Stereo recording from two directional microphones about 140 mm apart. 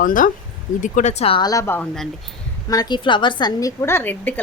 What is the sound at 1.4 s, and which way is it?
Speech, 25° left (ahead or behind).